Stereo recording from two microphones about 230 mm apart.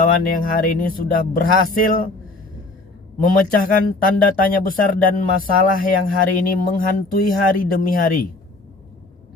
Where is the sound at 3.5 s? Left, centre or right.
Left.